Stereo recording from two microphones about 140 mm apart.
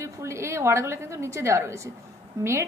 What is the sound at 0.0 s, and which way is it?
A woman's voice, 20° right (ahead or behind).